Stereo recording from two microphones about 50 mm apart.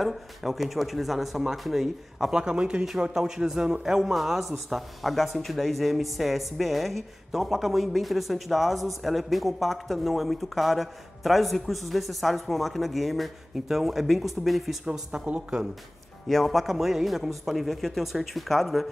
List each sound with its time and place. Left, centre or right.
0.0 s speech: centre
2.3 s a man's voice: centre
15.2 s speech: right
16.3 s speech: centre